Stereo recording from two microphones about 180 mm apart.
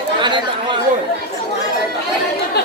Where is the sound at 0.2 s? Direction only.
25° right (ahead or behind).